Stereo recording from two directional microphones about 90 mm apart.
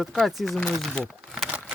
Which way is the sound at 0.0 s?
Centre (ahead or behind).